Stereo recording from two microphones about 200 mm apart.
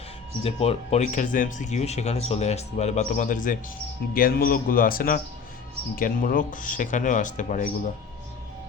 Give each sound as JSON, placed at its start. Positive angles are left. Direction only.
{"t": 0.4, "sound": "speech", "side_deg": 30}